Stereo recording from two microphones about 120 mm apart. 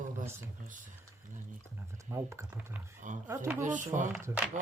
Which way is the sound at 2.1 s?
25° right (ahead or behind).